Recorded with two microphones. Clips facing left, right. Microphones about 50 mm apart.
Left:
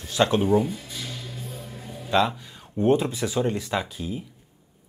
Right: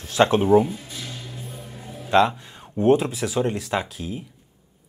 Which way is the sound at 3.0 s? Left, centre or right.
Centre.